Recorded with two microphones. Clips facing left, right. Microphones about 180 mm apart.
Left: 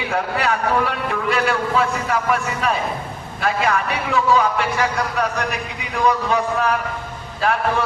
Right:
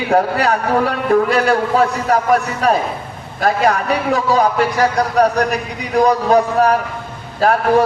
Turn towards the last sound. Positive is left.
turn(degrees=-40)  # may be behind; listen again after turning